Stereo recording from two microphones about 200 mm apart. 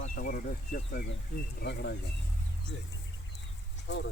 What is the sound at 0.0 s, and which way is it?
Speech, 45° left (ahead or behind).